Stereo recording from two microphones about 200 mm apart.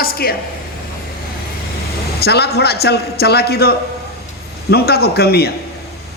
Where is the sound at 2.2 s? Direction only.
55° left (ahead or behind).